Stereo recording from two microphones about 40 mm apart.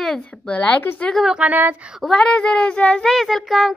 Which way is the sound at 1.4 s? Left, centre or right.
Right.